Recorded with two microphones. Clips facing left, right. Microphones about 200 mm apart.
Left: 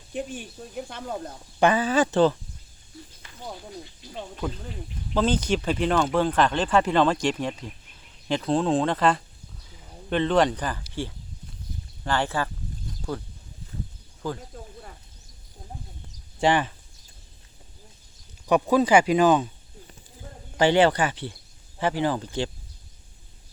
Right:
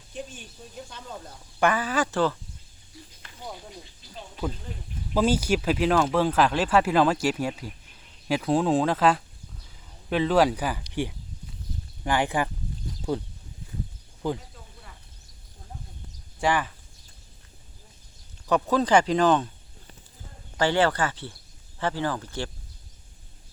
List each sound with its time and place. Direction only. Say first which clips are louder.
0.1 s speech: left 6 dB; 60° left (ahead or behind)
1.5 s speech: left 4 dB; 25° left (ahead or behind)
5.1 s speech: right 1 dB; 10° right (ahead or behind)
12.0 s speech: right 1 dB; 15° right (ahead or behind)
14.5 s a sound: left 8 dB; 45° left (ahead or behind)
16.4 s speech: left 3 dB; 25° left (ahead or behind)
18.4 s speech: left 3 dB; 10° left (ahead or behind)
20.6 s speech: left 4 dB; 15° left (ahead or behind)